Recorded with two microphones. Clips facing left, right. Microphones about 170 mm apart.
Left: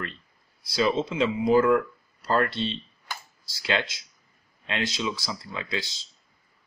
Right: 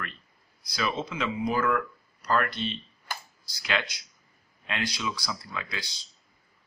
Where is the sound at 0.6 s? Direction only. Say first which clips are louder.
Left 7 dB; 25° left (ahead or behind).